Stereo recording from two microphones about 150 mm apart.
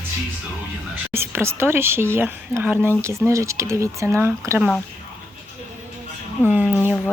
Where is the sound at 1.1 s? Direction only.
15° right (ahead or behind).